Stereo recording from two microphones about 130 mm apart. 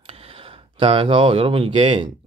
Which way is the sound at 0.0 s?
50° right (ahead or behind).